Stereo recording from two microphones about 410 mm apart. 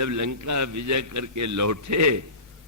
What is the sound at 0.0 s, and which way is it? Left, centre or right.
A man's voice, right.